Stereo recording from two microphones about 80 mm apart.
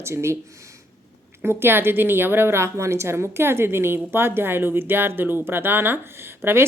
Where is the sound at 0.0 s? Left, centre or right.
Right.